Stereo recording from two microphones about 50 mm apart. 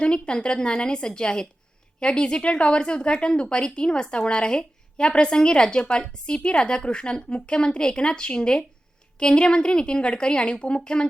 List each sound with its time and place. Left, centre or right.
0.0 s a woman's voice: centre